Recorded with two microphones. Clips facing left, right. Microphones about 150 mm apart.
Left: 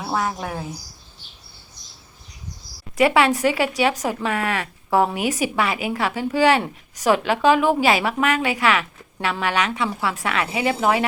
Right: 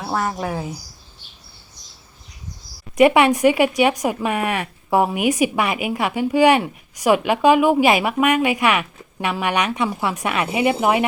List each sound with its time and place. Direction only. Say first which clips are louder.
0.0 s speech: right 1 dB; centre (ahead or behind)
2.9 s speech: right 4 dB; 20° right (ahead or behind)